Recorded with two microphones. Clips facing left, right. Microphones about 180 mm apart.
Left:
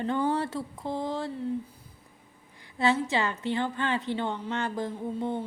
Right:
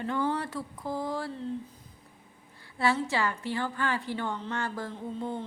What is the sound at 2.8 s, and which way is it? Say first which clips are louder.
A woman's voice: left 2 dB; 20° left (ahead or behind).